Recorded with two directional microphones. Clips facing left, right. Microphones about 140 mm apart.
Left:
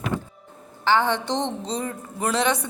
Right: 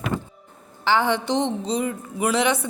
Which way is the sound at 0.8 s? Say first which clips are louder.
Even; 10° right (ahead or behind).